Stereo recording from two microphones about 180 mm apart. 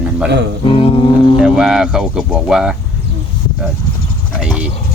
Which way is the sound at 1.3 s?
5° right (ahead or behind).